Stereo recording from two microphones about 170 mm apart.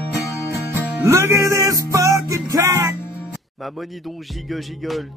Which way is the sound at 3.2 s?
Centre (ahead or behind).